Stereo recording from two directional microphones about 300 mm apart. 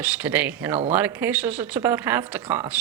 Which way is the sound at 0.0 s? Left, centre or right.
Centre.